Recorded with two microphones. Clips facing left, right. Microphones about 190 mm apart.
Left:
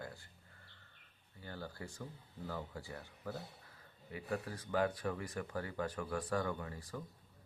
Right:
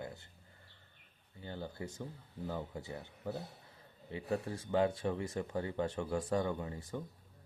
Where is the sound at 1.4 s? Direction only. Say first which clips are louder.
Right 4 dB; 20° right (ahead or behind).